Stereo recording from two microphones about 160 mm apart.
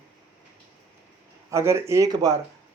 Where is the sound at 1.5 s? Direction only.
15° right (ahead or behind).